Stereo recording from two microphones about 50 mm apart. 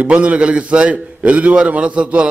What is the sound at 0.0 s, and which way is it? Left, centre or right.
A man's voice, right.